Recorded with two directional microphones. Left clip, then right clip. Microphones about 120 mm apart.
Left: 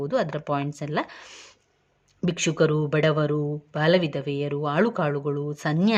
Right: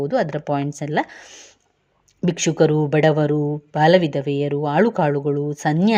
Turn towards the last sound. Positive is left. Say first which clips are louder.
# right 6 dB
turn(degrees=-20)  # may be behind; listen again after turning